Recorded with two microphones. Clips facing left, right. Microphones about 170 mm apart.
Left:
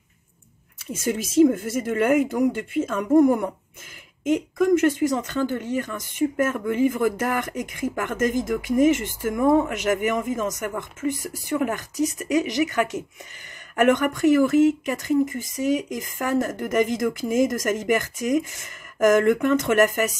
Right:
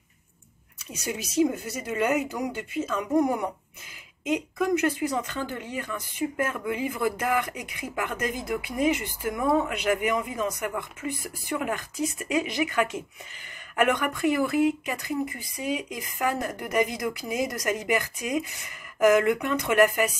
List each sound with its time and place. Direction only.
0.9 s speech: 50° left (ahead or behind)